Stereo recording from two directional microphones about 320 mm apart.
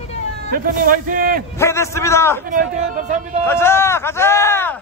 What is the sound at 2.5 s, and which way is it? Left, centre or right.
Speech, right.